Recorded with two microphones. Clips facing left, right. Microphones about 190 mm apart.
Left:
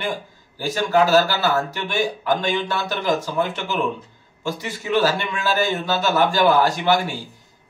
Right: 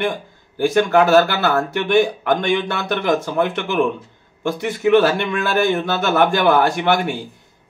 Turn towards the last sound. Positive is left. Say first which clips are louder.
# right 2 dB
turn(degrees=-60)  # may be behind; listen again after turning